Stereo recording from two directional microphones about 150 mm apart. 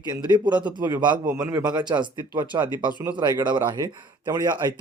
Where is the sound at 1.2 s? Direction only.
15° right (ahead or behind).